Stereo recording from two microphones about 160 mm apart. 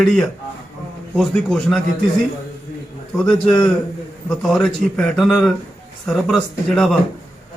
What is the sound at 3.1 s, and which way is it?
Speech, 15° left (ahead or behind).